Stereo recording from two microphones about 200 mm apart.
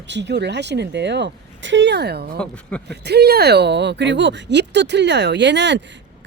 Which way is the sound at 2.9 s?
55° right (ahead or behind).